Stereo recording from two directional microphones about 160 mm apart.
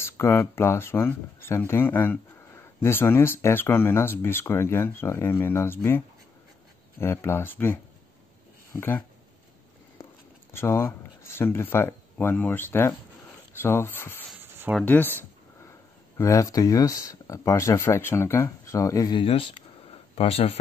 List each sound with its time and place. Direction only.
0.0 s speech: 15° left (ahead or behind)
10.5 s speech: 15° left (ahead or behind)
14.4 s a sound: 15° right (ahead or behind)
16.2 s speech: 20° left (ahead or behind); by 20.5 s 40° left (ahead or behind)